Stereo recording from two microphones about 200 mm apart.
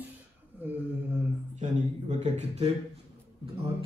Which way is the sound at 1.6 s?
35° right (ahead or behind).